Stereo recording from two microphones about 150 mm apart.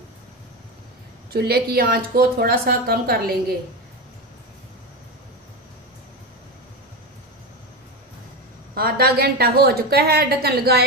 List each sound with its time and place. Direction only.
1.3 s speech: 90° right
8.7 s speech: 90° right